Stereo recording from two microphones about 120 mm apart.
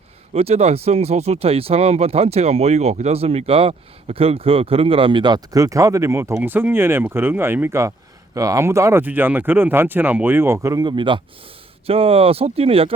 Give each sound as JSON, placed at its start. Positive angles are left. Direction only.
{"t": 0.3, "sound": "speech", "side_deg": -55}
{"t": 10.8, "sound": "speech", "side_deg": -40}